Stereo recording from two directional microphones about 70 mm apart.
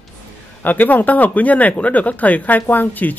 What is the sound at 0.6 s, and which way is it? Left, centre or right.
Speech, left.